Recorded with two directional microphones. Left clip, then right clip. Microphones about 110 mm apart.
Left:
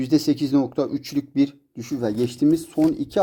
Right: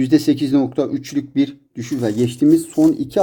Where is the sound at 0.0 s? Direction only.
30° left (ahead or behind).